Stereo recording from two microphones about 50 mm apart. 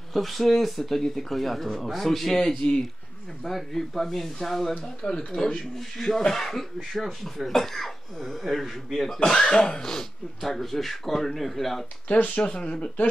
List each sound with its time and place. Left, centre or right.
0.1 s speech: centre
4.7 s speech: left; by 9.2 s centre
9.2 s speech: centre
12.4 s speech: left